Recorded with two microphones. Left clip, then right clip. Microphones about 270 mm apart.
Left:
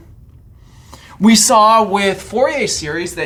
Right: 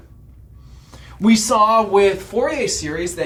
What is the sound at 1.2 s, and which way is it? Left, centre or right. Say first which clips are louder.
Speech: left 5 dB; left.